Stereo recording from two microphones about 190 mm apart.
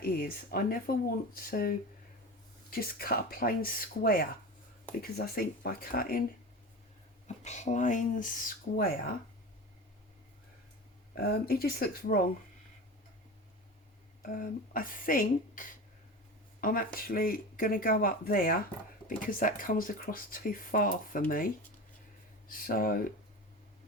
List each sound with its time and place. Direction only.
0.0 s speech: 50° left (ahead or behind)
7.3 s speech: 35° left (ahead or behind)
11.1 s speech: 55° left (ahead or behind)
14.2 s speech: 45° left (ahead or behind)